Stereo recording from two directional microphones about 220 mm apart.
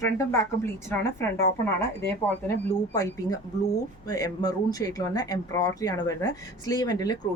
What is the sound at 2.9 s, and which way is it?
Speech, 15° left (ahead or behind).